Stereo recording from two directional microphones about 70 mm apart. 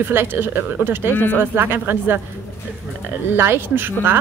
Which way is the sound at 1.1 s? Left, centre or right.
Left.